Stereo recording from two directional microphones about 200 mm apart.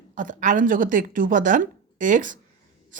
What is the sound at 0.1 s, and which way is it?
Speech, 40° right (ahead or behind).